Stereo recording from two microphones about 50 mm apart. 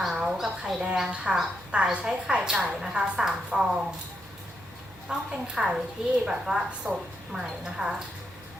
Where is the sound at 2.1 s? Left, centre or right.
Right.